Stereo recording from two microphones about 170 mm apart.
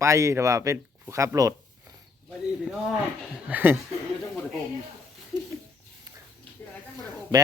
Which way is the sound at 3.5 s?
10° right (ahead or behind).